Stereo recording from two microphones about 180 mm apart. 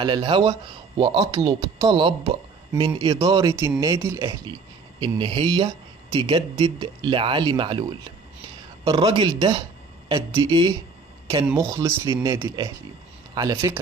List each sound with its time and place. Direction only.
0.0 s speech: 25° right (ahead or behind)
5.0 s speech: 25° right (ahead or behind)